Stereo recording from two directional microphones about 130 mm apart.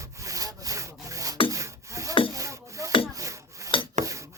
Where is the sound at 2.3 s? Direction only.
25° right (ahead or behind).